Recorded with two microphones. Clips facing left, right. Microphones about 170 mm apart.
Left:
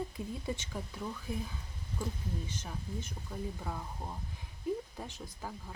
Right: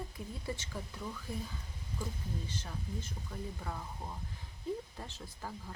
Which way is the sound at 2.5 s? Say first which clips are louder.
Left 1 dB; 15° left (ahead or behind).